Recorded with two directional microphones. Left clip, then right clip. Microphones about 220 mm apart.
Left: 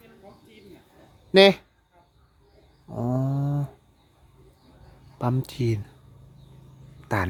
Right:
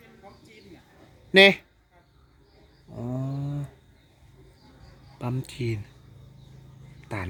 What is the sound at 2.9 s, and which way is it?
Wild animals, 20° left (ahead or behind).